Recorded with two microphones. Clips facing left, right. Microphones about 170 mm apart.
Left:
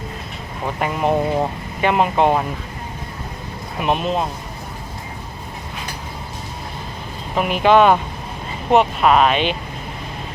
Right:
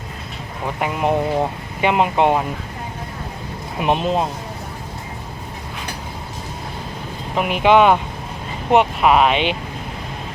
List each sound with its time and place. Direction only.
0.8 s speech: 10° right (ahead or behind)
3.8 s speech: 20° right (ahead or behind)
7.3 s speech: 15° right (ahead or behind)